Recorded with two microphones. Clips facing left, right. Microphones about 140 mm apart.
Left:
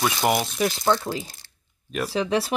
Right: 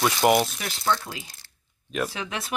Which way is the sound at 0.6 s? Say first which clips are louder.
Left 5 dB; 35° left (ahead or behind).